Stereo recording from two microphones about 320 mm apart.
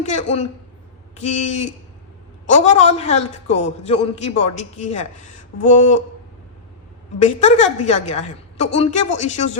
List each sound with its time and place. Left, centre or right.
0.0 s a man's voice: left
7.2 s a man's voice: left